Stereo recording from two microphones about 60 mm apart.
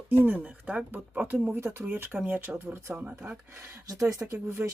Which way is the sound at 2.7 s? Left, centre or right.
Right.